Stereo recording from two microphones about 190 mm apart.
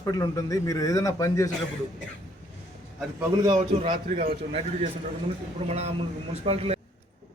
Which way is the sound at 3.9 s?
50° right (ahead or behind).